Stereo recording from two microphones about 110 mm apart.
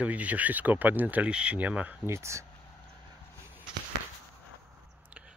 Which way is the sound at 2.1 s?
25° right (ahead or behind).